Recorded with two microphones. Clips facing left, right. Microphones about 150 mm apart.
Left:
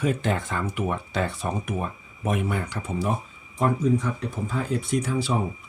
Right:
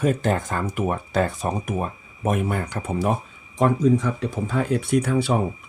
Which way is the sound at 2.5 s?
45° right (ahead or behind).